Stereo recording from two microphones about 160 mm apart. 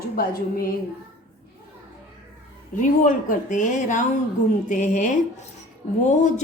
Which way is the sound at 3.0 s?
50° left (ahead or behind).